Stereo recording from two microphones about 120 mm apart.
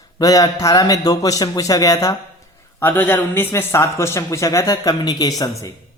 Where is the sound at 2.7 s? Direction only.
15° left (ahead or behind); by 5.3 s 35° left (ahead or behind).